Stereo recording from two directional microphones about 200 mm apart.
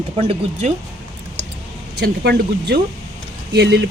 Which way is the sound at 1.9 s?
55° right (ahead or behind).